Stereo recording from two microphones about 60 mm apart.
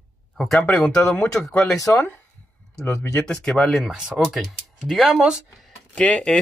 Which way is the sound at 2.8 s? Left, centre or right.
Left.